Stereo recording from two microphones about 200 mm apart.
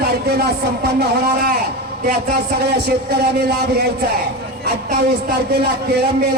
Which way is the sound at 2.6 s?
55° right (ahead or behind).